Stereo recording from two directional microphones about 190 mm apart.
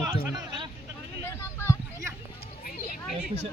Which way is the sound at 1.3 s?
10° left (ahead or behind).